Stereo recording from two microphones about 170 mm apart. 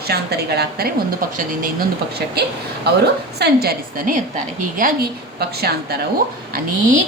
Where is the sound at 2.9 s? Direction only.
70° right (ahead or behind).